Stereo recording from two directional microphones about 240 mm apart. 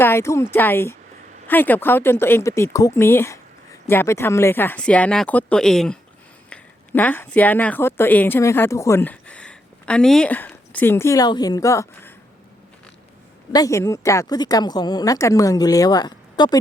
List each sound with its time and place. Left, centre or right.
0.0 s speech: centre
13.5 s speech: centre